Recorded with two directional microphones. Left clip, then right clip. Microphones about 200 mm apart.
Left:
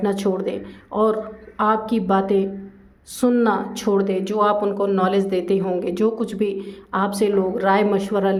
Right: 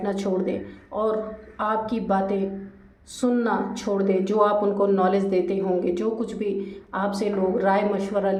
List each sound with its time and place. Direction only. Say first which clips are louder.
0.0 s speech: left 4 dB; 45° left (ahead or behind)